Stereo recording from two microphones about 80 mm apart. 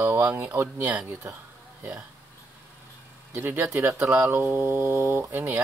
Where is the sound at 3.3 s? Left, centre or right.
Right.